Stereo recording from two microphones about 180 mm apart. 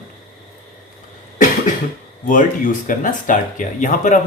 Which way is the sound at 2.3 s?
45° left (ahead or behind).